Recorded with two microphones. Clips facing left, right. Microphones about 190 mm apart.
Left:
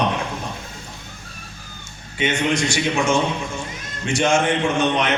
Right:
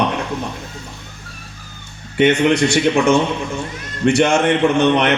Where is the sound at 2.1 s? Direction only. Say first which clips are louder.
Right 8 dB; 60° right (ahead or behind).